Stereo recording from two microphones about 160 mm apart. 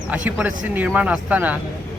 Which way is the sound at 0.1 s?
10° right (ahead or behind).